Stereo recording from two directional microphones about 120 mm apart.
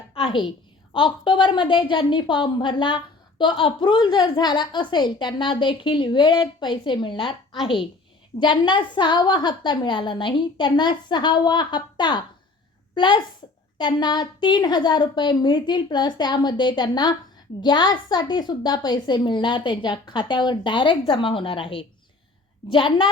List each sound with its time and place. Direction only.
0.1 s a sound: 50° left (ahead or behind)
0.9 s a woman's voice: 40° left (ahead or behind)
8.4 s a woman's voice: 40° left (ahead or behind)